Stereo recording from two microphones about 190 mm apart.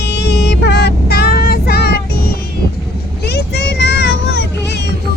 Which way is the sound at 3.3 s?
65° left (ahead or behind).